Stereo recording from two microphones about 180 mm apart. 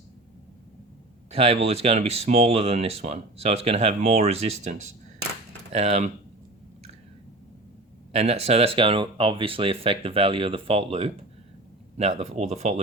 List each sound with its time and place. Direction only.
1.3 s speech: 35° right (ahead or behind)
5.7 s speech: 35° right (ahead or behind)
8.1 s speech: 35° right (ahead or behind)